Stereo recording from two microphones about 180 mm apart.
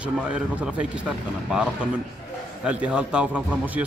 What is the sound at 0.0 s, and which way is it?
A man's voice, 5° right (ahead or behind).